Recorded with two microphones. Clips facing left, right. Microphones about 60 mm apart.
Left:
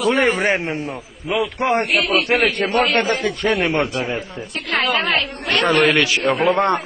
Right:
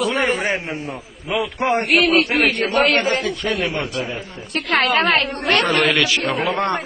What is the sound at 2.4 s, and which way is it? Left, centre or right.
Speech, right.